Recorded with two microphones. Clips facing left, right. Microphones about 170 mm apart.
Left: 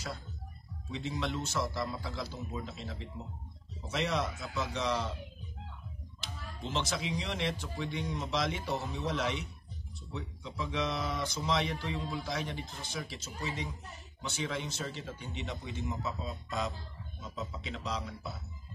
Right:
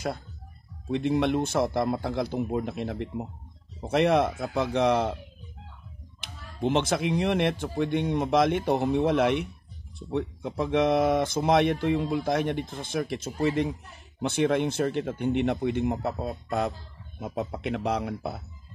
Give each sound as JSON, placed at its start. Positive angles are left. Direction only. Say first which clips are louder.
{"t": 0.8, "sound": "speech", "louder": "right 12 dB", "side_deg": -60}
{"t": 6.2, "sound": "speech", "louder": "right 13 dB", "side_deg": -55}